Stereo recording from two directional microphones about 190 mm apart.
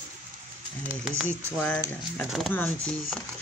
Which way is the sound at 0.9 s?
Centre (ahead or behind).